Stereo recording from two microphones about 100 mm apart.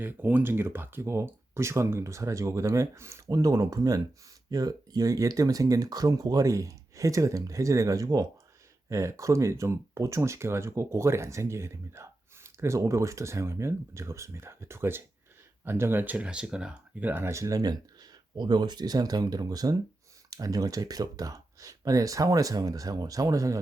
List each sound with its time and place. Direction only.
0.0 s speech: 20° right (ahead or behind); by 23.6 s 35° right (ahead or behind)